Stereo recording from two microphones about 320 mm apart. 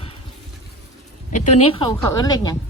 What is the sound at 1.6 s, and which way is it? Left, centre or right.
Speech, centre.